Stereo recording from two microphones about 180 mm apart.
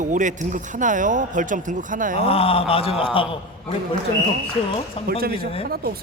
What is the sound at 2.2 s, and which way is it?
A man's voice, 35° left (ahead or behind).